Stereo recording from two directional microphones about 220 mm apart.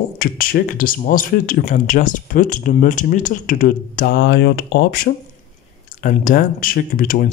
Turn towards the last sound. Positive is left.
turn(degrees=40)  # may be behind; listen again after turning